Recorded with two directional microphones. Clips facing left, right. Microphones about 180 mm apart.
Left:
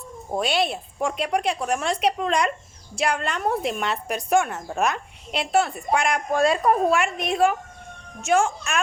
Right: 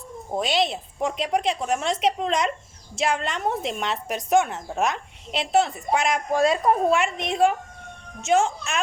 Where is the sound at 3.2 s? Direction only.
20° right (ahead or behind).